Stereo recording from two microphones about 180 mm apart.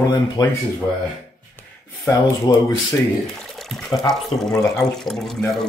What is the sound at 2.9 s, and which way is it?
Speech, centre (ahead or behind).